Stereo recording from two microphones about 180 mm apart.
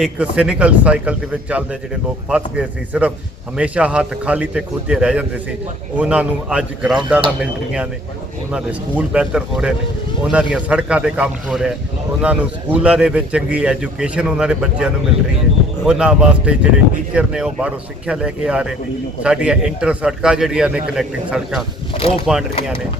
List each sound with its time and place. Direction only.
0.0 s a man's voice: 5° right (ahead or behind)
21.9 s speech: 35° left (ahead or behind)